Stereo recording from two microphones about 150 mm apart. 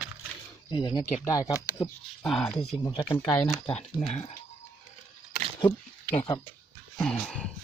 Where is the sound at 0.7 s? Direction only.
30° left (ahead or behind).